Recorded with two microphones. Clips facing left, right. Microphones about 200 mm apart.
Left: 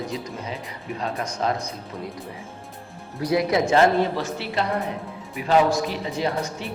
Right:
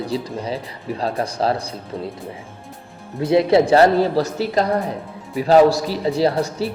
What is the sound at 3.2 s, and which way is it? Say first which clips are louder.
A man's voice: right 7 dB; 25° right (ahead or behind).